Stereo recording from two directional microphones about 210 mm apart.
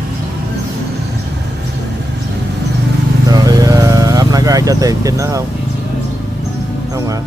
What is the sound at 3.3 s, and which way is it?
Vehicle, 15° right (ahead or behind).